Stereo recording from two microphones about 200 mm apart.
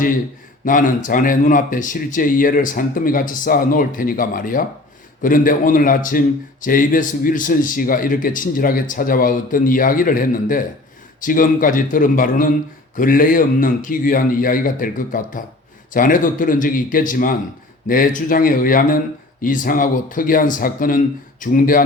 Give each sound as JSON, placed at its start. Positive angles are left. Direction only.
{"t": 0.6, "sound": "a man's voice", "side_deg": 40}